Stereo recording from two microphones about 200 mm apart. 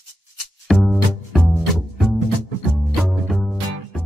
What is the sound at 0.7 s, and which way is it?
Music, centre (ahead or behind).